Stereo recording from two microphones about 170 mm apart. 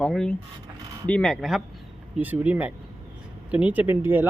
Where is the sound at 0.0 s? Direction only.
5° left (ahead or behind).